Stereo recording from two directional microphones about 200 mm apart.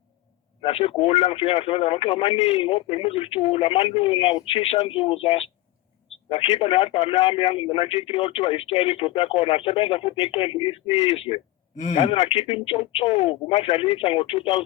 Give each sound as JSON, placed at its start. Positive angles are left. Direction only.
{"t": 0.6, "sound": "speech", "side_deg": 30}